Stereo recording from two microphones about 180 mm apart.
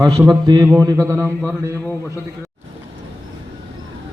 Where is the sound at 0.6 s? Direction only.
15° right (ahead or behind).